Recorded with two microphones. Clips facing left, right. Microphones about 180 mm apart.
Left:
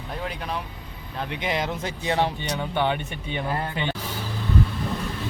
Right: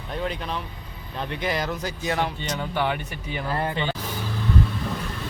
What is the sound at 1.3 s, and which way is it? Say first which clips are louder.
Speech: even; 20° left (ahead or behind).